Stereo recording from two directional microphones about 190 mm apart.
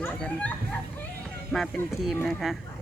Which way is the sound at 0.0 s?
5° left (ahead or behind).